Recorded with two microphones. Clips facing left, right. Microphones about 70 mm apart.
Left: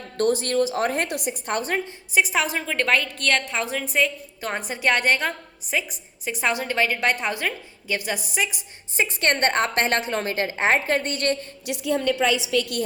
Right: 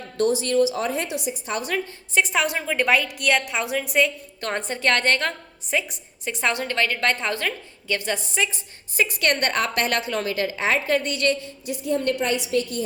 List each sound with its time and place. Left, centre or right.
0.2 s a woman's voice: left
2.1 s a woman's voice: centre
9.0 s a woman's voice: left
11.6 s a woman's voice: left